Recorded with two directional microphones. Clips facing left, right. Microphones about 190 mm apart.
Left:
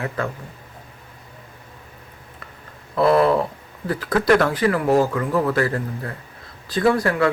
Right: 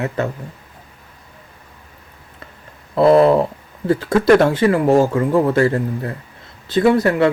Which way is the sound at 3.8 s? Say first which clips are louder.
Right 5 dB; 25° right (ahead or behind).